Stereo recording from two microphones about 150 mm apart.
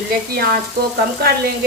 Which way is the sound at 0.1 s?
75° right (ahead or behind).